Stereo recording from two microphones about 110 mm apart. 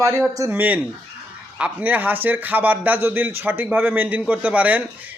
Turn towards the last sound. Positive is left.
turn(degrees=-15)  # may be behind; listen again after turning